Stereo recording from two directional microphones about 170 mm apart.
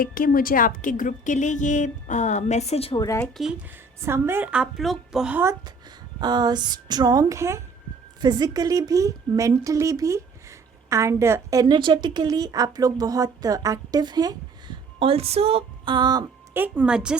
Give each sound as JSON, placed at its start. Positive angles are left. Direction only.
{"t": 0.0, "sound": "a woman's voice", "side_deg": 55}
{"t": 3.4, "sound": "speech", "side_deg": 0}
{"t": 4.0, "sound": "a woman's voice", "side_deg": -15}
{"t": 16.6, "sound": "speech", "side_deg": -10}